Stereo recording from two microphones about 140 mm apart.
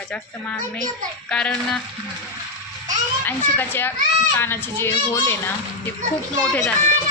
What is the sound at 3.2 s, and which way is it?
A child's voice, 15° left (ahead or behind).